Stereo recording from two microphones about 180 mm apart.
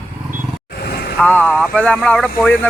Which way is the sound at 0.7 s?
60° left (ahead or behind).